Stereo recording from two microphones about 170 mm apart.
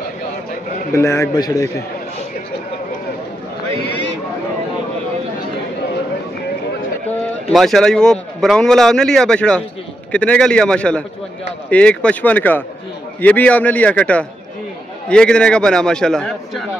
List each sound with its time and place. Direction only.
0.9 s a man's voice: 15° left (ahead or behind)
7.1 s a man's voice: centre (ahead or behind)